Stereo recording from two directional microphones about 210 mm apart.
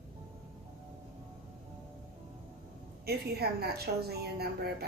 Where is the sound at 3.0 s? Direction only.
50° right (ahead or behind).